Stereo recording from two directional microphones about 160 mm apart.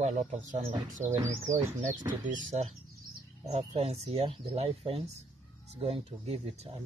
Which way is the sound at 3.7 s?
40° right (ahead or behind).